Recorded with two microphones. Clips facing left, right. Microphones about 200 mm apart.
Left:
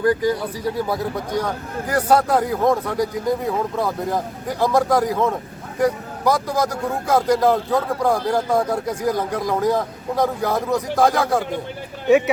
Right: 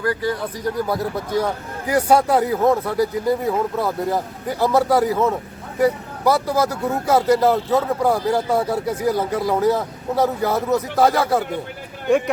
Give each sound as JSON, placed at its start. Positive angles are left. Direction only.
{"t": 0.0, "sound": "speech", "side_deg": 15}
{"t": 0.9, "sound": "speech", "side_deg": -5}